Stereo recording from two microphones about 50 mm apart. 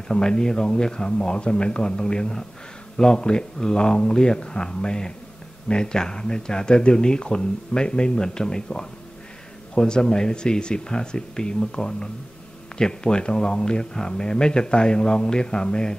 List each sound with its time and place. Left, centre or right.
0.1 s speech: centre